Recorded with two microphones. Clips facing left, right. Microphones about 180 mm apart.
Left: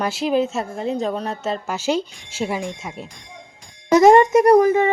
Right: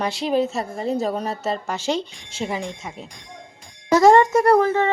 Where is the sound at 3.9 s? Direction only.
20° left (ahead or behind).